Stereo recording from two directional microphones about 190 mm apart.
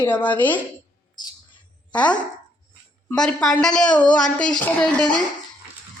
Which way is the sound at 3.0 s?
5° left (ahead or behind).